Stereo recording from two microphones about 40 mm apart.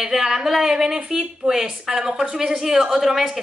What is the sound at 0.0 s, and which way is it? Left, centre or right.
A woman's voice, centre.